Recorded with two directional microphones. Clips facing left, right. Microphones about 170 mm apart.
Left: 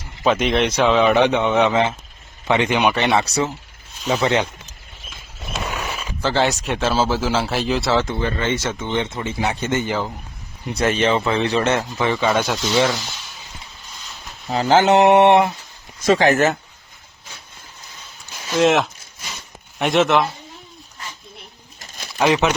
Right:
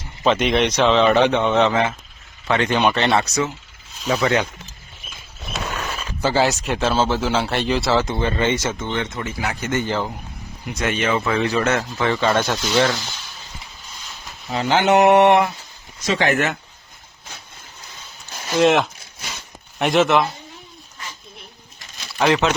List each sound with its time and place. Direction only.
0.2 s speech: centre (ahead or behind)
3.2 s speech: 35° left (ahead or behind)
5.5 s a sound: 10° left (ahead or behind)
6.2 s speech: 5° right (ahead or behind)
8.0 s speech: 20° right (ahead or behind)
8.8 s speech: 20° left (ahead or behind)
10.8 s speech: 35° left (ahead or behind); by 12.5 s 5° left (ahead or behind)
14.5 s speech: 40° left (ahead or behind)
14.9 s speech: 25° left (ahead or behind)
16.0 s speech: 40° left (ahead or behind)
18.5 s speech: centre (ahead or behind)
21.8 s bird: 50° left (ahead or behind)
22.2 s speech: 15° left (ahead or behind)